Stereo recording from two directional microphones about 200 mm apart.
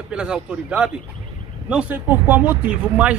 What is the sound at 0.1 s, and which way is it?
Speech, 5° right (ahead or behind).